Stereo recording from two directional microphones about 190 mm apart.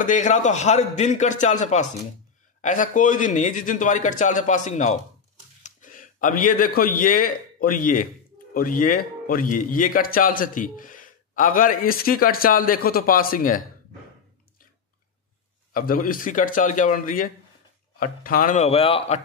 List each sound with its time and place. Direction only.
0.0 s a man's voice: 40° left (ahead or behind)
15.7 s a man's voice: 50° left (ahead or behind); by 19.2 s 30° left (ahead or behind)